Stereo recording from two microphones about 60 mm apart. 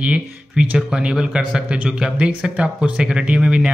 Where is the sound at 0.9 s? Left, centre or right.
Centre.